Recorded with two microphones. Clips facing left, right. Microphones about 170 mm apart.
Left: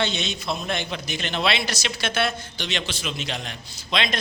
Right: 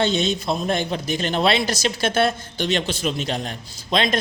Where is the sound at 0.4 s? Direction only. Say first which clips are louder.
Right 5 dB; 45° right (ahead or behind).